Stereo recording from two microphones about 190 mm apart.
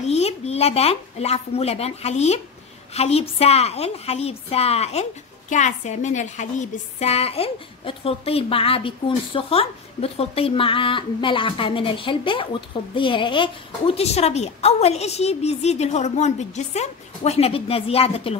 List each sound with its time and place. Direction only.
0.0 s a woman's voice: 35° left (ahead or behind)